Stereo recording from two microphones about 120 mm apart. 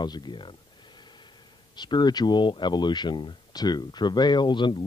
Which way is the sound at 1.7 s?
40° left (ahead or behind).